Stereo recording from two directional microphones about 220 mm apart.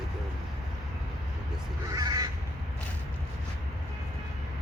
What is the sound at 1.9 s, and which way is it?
Crow, 15° right (ahead or behind).